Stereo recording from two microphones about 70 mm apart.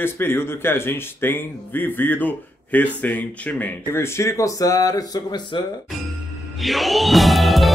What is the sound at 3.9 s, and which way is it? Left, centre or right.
Speech, left.